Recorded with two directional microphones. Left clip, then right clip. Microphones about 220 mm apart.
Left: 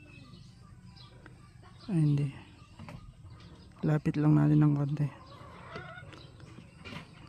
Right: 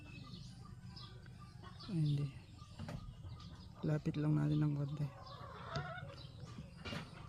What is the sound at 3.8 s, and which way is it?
Speech, 45° left (ahead or behind).